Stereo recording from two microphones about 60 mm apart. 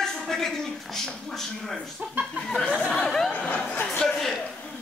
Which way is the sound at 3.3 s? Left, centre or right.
Centre.